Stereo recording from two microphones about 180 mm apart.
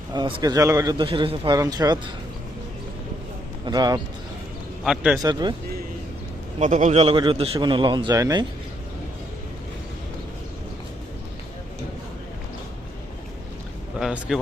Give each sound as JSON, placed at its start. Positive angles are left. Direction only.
{"t": 0.1, "sound": "a man's voice", "side_deg": -25}
{"t": 3.7, "sound": "a man's voice", "side_deg": -20}
{"t": 4.8, "sound": "speech", "side_deg": -5}
{"t": 5.1, "sound": "a man's voice", "side_deg": -25}
{"t": 6.6, "sound": "a man's voice", "side_deg": -40}
{"t": 14.0, "sound": "a sound", "side_deg": 0}